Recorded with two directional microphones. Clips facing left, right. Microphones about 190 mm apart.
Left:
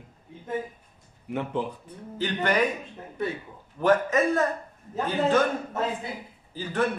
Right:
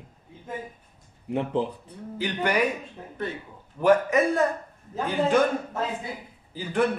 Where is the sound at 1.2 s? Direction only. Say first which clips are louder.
Right 3 dB; 30° right (ahead or behind).